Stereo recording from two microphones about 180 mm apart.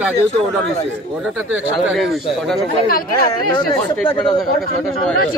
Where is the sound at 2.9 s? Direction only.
55° left (ahead or behind).